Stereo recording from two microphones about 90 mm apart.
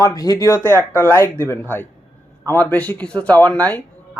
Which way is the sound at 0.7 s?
25° left (ahead or behind).